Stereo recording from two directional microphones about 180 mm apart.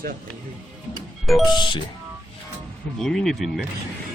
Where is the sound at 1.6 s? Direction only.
25° left (ahead or behind).